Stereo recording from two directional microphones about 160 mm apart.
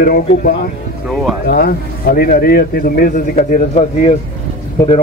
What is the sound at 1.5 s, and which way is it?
A man's voice, 65° left (ahead or behind).